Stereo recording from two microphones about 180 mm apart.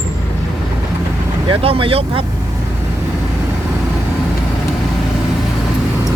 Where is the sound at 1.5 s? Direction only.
30° right (ahead or behind).